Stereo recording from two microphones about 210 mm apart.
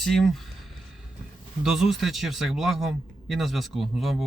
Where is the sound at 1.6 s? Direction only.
Centre (ahead or behind).